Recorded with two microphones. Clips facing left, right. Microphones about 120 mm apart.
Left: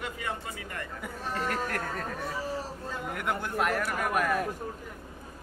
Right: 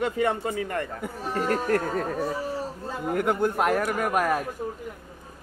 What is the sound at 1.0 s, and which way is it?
Speech, 35° right (ahead or behind).